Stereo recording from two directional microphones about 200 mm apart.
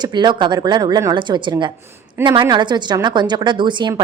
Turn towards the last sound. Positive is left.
turn(degrees=-20)  # may be behind; listen again after turning